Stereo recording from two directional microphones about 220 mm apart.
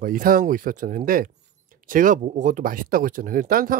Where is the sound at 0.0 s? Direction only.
40° right (ahead or behind).